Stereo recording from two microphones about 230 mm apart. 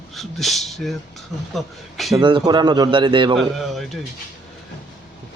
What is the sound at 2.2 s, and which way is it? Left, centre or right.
Speech, centre.